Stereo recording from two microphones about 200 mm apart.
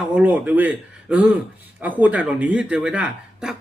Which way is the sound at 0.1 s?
5° right (ahead or behind).